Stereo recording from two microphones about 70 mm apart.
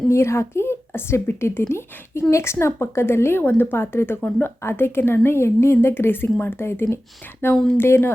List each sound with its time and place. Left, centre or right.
0.1 s a woman's voice: left
7.5 s speech: centre
7.8 s a woman's voice: left